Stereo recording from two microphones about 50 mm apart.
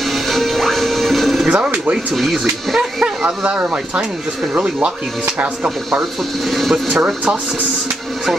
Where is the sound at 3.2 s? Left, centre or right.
Right.